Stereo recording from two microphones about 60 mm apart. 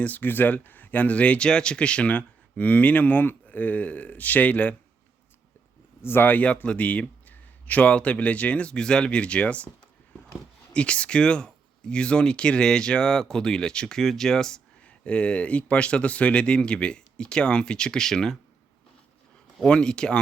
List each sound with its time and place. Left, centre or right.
0.0 s speech: left
6.0 s speech: left; by 9.6 s centre
10.7 s speech: centre
19.6 s speech: centre